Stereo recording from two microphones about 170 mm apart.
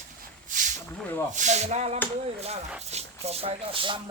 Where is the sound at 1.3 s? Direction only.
45° right (ahead or behind).